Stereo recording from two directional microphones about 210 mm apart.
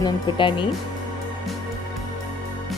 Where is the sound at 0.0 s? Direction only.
25° left (ahead or behind).